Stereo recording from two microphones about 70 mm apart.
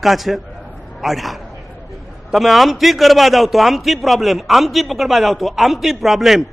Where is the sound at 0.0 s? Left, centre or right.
Centre.